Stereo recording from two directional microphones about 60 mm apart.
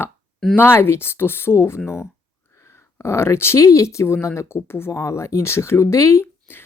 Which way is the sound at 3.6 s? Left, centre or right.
Left.